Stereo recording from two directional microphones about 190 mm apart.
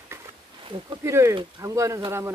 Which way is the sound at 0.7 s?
20° right (ahead or behind).